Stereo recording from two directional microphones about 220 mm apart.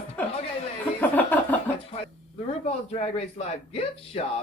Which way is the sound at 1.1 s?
5° left (ahead or behind).